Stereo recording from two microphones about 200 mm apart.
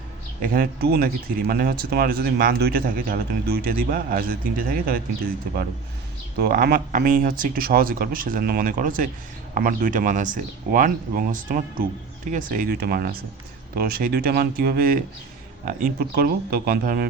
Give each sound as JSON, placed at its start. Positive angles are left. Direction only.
{"t": 0.4, "sound": "speech", "side_deg": -50}
{"t": 6.4, "sound": "speech", "side_deg": -50}